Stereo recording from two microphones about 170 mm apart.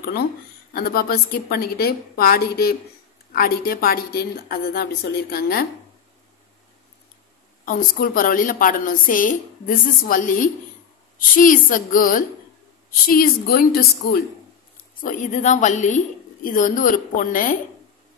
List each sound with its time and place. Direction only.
0.7 s a woman's voice: 60° left (ahead or behind)
7.6 s a woman's voice: 55° left (ahead or behind)
15.0 s a woman's voice: 50° left (ahead or behind)